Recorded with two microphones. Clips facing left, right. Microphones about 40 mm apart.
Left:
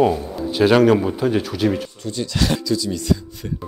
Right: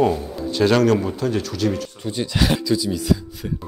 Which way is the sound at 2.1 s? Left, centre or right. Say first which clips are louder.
Right 1 dB; centre.